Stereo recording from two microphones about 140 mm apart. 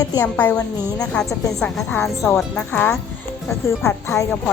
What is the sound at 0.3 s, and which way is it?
A woman's voice, 10° left (ahead or behind).